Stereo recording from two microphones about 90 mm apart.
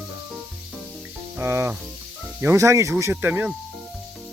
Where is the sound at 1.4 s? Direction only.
25° right (ahead or behind).